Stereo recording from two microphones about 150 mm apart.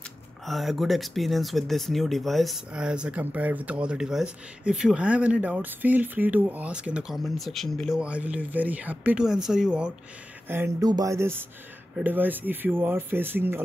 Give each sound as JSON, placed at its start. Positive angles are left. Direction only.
{"t": 0.5, "sound": "speech", "side_deg": 0}